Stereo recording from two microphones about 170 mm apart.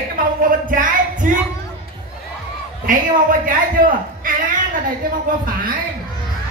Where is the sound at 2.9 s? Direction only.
50° right (ahead or behind).